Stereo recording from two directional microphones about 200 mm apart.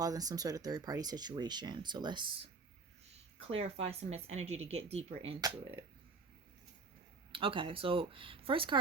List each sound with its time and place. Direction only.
0.0 s speech: 20° right (ahead or behind)
7.3 s speech: 25° right (ahead or behind)